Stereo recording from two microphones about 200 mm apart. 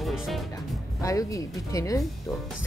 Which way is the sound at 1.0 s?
15° left (ahead or behind).